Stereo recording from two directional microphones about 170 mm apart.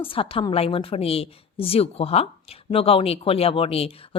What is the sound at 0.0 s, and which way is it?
A woman's voice, 30° left (ahead or behind).